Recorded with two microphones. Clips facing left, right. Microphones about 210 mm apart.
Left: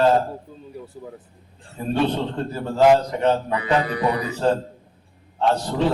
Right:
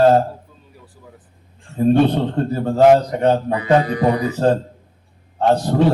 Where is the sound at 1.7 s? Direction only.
55° right (ahead or behind).